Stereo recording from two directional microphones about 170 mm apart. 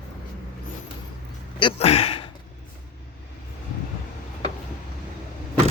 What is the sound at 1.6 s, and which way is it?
Speech, 30° left (ahead or behind).